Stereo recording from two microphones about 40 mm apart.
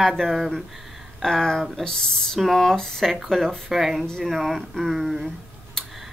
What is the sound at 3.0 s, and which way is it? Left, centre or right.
A woman's voice, centre.